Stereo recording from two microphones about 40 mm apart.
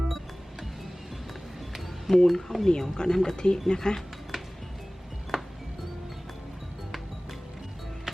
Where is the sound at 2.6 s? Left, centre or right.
Centre.